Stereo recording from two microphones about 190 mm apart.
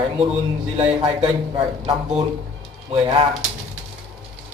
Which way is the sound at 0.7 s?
30° right (ahead or behind).